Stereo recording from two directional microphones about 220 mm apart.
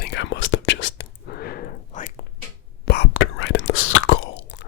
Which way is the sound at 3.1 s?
60° left (ahead or behind).